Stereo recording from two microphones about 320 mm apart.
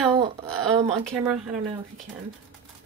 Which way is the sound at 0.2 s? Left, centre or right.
Centre.